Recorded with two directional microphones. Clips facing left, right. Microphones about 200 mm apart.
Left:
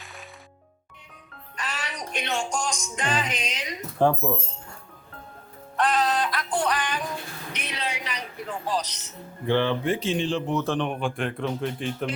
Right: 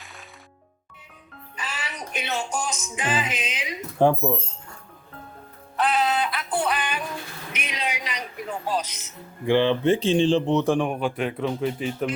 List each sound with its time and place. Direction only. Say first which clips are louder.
1.5 s speech: left 1 dB; centre (ahead or behind)
3.9 s speech: right 2 dB; 15° right (ahead or behind)
5.7 s music: right 1 dB; 5° right (ahead or behind)
7.5 s a woman's voice: right 2 dB; 10° right (ahead or behind)